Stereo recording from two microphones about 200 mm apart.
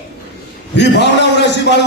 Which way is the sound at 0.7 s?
60° left (ahead or behind).